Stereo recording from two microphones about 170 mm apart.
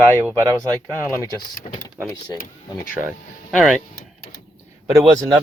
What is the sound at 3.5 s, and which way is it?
Speech, 5° right (ahead or behind).